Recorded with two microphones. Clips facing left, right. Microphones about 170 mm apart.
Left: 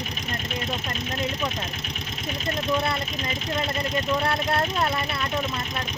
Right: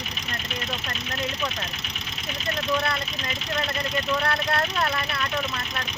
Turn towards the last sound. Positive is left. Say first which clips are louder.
# left 1 dB
turn(degrees=25)  # may be behind; listen again after turning